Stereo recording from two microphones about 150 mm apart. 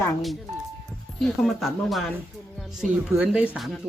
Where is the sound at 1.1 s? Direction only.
Centre (ahead or behind).